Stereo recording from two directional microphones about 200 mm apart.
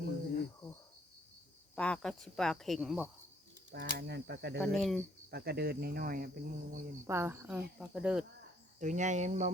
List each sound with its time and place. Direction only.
1.7 s speech: 5° left (ahead or behind)
3.7 s speech: 55° right (ahead or behind)
4.6 s speech: centre (ahead or behind)
5.3 s speech: 55° right (ahead or behind)
7.1 s speech: 15° right (ahead or behind)
8.8 s cricket: 40° right (ahead or behind)